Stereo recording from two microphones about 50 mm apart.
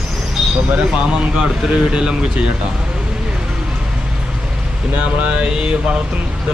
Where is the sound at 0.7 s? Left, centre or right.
Right.